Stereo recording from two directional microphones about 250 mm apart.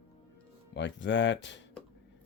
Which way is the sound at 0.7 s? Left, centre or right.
Left.